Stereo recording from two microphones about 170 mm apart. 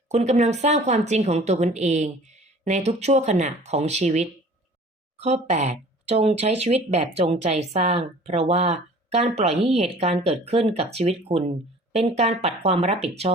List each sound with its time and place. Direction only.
0.1 s speech: 40° right (ahead or behind)